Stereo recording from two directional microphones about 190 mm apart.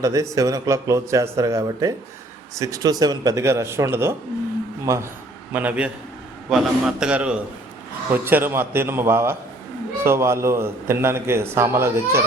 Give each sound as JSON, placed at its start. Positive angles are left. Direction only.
{"t": 0.0, "sound": "a man's voice", "side_deg": -15}